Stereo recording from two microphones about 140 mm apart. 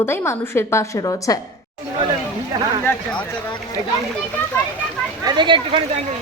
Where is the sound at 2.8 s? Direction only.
10° left (ahead or behind).